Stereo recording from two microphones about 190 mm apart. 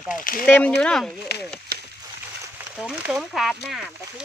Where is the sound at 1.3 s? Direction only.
60° left (ahead or behind).